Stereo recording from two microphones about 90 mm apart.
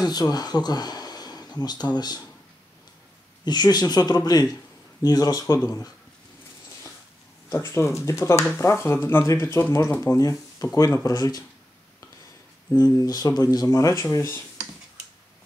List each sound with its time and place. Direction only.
0.0 s speech: 50° left (ahead or behind)
3.4 s speech: 50° left (ahead or behind)
7.5 s speech: 30° left (ahead or behind)
12.7 s speech: 45° left (ahead or behind)